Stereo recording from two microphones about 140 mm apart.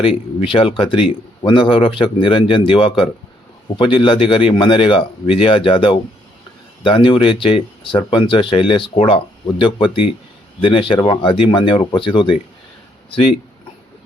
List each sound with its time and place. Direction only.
0.0 s speech: 40° left (ahead or behind)